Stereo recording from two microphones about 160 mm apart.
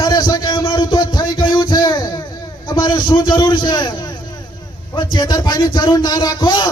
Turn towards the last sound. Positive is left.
turn(degrees=30)  # may be behind; listen again after turning